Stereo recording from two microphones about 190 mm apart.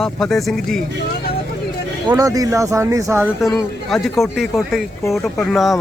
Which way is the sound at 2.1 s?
15° right (ahead or behind).